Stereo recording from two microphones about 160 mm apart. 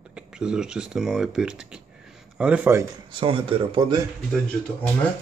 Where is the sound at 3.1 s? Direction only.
35° right (ahead or behind).